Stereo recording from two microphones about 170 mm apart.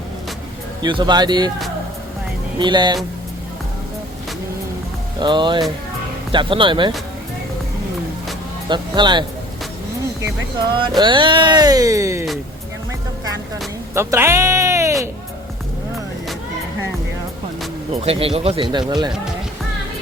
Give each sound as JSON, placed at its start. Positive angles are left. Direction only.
{"t": 0.8, "sound": "speech", "side_deg": -25}
{"t": 2.6, "sound": "speech", "side_deg": -25}
{"t": 5.2, "sound": "speech", "side_deg": -25}
{"t": 8.7, "sound": "speech", "side_deg": -25}
{"t": 10.8, "sound": "speech", "side_deg": -30}
{"t": 13.9, "sound": "speech", "side_deg": -15}
{"t": 17.9, "sound": "speech", "side_deg": -35}